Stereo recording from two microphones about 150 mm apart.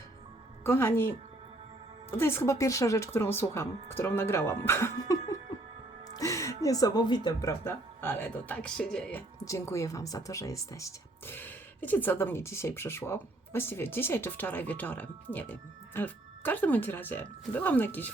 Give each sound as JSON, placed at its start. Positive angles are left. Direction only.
{"t": 0.6, "sound": "speech", "side_deg": 15}
{"t": 2.1, "sound": "speech", "side_deg": 15}
{"t": 9.4, "sound": "speech", "side_deg": 20}